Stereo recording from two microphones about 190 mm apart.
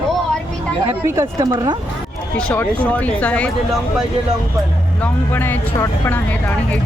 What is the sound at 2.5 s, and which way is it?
Speech, 5° left (ahead or behind).